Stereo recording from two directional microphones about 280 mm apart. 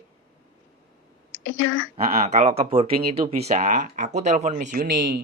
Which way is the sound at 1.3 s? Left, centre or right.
Left.